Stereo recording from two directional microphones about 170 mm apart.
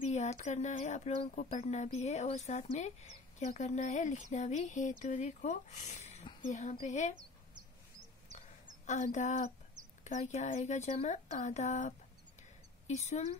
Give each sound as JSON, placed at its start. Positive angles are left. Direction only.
{"t": 0.1, "sound": "a woman's voice", "side_deg": 40}
{"t": 8.8, "sound": "a woman's voice", "side_deg": 45}